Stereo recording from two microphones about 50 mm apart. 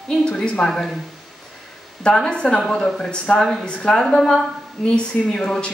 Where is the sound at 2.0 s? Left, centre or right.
Centre.